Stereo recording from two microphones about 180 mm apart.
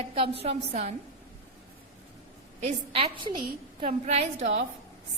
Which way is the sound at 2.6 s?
30° right (ahead or behind).